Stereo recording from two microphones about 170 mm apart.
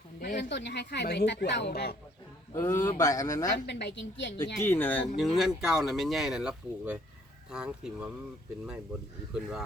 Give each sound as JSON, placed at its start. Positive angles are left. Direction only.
{"t": 0.2, "sound": "a woman's voice", "side_deg": 70}
{"t": 2.5, "sound": "speech", "side_deg": 15}
{"t": 3.7, "sound": "a woman's voice", "side_deg": 90}
{"t": 4.6, "sound": "speech", "side_deg": 15}
{"t": 9.3, "sound": "speech", "side_deg": -5}